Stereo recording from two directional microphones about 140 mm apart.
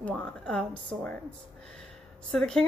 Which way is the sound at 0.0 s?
5° left (ahead or behind).